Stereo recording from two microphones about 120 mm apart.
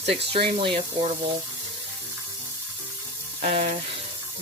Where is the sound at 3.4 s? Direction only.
60° right (ahead or behind).